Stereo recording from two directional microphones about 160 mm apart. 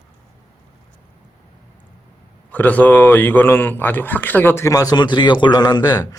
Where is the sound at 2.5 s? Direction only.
10° left (ahead or behind).